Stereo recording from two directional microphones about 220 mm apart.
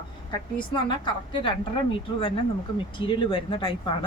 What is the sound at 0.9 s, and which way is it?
Speech, 20° left (ahead or behind).